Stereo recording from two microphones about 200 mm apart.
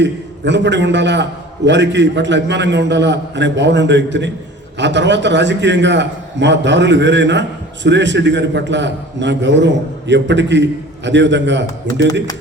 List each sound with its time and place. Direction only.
0.0 s a man's voice: 60° right (ahead or behind)